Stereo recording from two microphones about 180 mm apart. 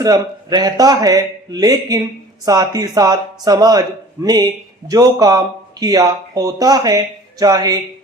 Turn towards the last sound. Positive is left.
turn(degrees=-20)  # may be behind; listen again after turning